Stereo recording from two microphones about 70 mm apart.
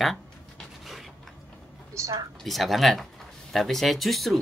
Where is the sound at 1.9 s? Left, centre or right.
Right.